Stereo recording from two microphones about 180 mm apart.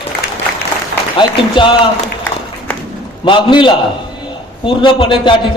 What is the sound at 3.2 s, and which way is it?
A man's voice, 25° left (ahead or behind).